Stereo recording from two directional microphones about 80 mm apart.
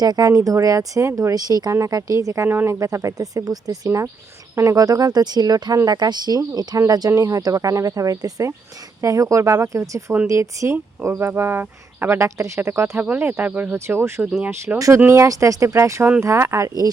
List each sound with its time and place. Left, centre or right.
0.0 s speech: right
1.7 s speech: right
2.5 s speech: right
13.0 s speech: right
13.7 s speech: right